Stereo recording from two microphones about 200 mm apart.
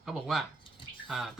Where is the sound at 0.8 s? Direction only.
25° left (ahead or behind).